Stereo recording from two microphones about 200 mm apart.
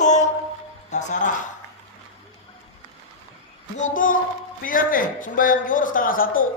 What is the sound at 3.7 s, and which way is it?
A man's voice, 40° left (ahead or behind).